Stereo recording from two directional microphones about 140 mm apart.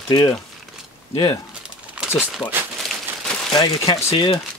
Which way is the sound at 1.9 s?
10° right (ahead or behind).